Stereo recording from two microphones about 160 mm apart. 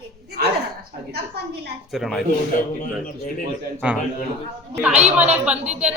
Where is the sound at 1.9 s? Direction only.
Centre (ahead or behind).